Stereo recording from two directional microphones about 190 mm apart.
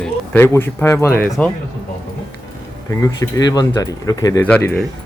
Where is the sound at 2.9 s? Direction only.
20° left (ahead or behind).